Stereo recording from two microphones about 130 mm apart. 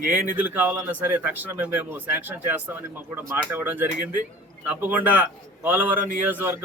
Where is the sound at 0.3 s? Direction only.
15° right (ahead or behind).